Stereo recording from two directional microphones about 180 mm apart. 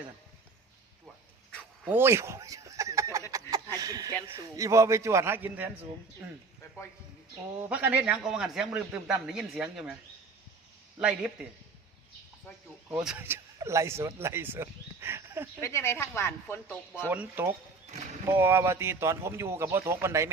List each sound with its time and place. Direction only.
1.8 s a sound: 10° right (ahead or behind)
3.8 s a man's voice: 20° right (ahead or behind)
7.7 s speech: 10° right (ahead or behind)
11.0 s speech: 5° right (ahead or behind)
12.9 s speech: 5° right (ahead or behind)
15.6 s speech: 15° left (ahead or behind)
17.1 s a man's voice: 10° right (ahead or behind)